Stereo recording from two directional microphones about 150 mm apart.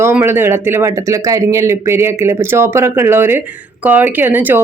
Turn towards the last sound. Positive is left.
turn(degrees=-10)  # may be behind; listen again after turning